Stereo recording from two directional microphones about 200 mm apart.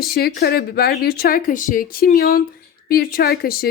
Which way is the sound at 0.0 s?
50° left (ahead or behind).